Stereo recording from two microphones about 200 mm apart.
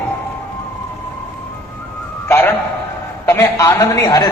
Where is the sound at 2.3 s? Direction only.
10° left (ahead or behind).